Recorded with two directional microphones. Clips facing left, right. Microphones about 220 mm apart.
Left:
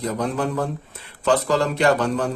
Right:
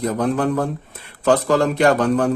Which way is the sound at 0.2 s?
55° right (ahead or behind).